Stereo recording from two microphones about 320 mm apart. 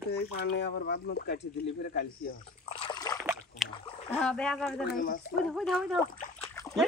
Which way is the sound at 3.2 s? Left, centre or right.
Centre.